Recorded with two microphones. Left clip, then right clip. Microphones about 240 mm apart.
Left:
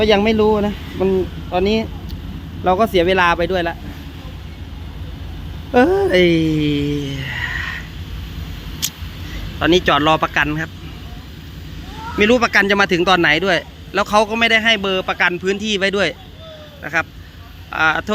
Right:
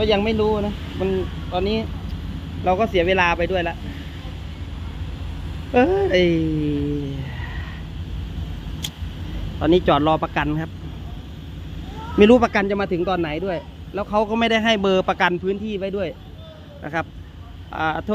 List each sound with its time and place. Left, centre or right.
0.0 s speech: left
2.6 s speech: left
5.7 s speech: centre
9.6 s a man's voice: centre
12.1 s speech: right
12.5 s a man's voice: centre
14.3 s a man's voice: centre
15.4 s a man's voice: centre
16.8 s a man's voice: centre